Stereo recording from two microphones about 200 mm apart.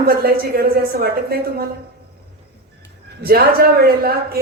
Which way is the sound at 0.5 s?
50° right (ahead or behind).